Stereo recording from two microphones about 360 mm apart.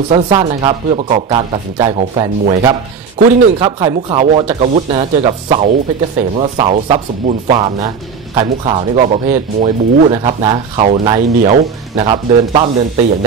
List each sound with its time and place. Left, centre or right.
0.1 s speech: centre